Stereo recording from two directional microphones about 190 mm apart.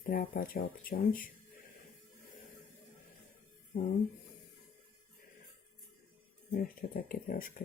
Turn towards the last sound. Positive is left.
turn(degrees=50)  # may be behind; listen again after turning